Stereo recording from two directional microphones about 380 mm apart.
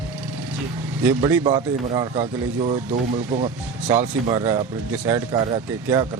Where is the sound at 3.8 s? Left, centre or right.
Centre.